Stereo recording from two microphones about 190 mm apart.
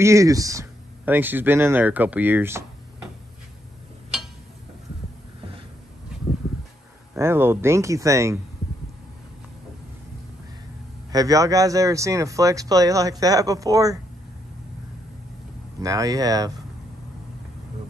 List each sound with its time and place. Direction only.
0.0 s speech: 15° right (ahead or behind)
7.2 s speech: 10° right (ahead or behind)
11.1 s speech: 20° right (ahead or behind)
15.8 s speech: 20° right (ahead or behind)